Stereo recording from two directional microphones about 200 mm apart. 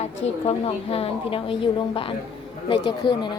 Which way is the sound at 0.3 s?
30° left (ahead or behind).